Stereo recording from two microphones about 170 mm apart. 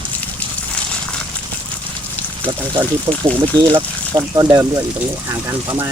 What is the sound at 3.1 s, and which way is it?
Speech, 20° right (ahead or behind).